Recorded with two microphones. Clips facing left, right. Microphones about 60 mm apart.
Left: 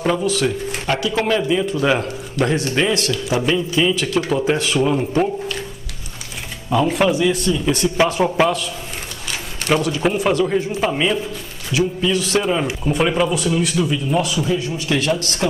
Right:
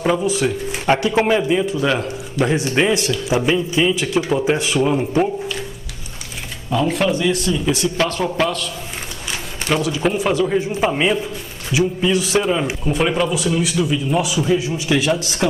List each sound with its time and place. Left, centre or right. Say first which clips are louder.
0.0 s speech: right 1 dB; centre
0.8 s speech: right 4 dB; right
1.8 s a man's voice: left 1 dB; centre
2.4 s a man's voice: right 1 dB; centre
6.7 s a man's voice: left 2 dB; centre
8.0 s a man's voice: left 6 dB; centre
9.8 s a man's voice: right 1 dB; centre
12.4 s a man's voice: right 1 dB; centre